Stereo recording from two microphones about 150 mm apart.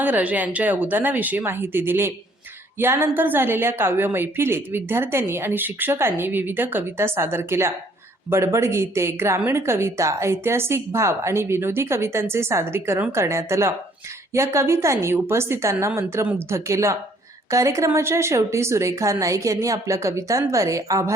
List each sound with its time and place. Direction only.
0.0 s a woman's voice: 10° right (ahead or behind)